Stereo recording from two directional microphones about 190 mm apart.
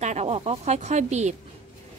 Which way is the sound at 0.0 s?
35° right (ahead or behind).